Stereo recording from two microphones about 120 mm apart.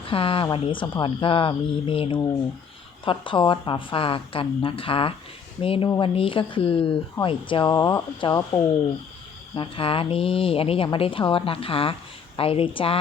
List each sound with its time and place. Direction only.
0.1 s speech: 50° left (ahead or behind)
7.8 s speech: 25° left (ahead or behind)
8.2 s speech: 45° left (ahead or behind)
9.6 s speech: 50° left (ahead or behind)